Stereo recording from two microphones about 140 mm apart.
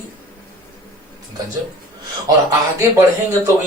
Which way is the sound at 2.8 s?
20° right (ahead or behind).